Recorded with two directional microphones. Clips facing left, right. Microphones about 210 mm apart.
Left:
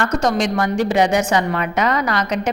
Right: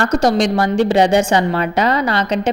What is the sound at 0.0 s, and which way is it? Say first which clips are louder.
A woman's voice: right 4 dB; 35° right (ahead or behind).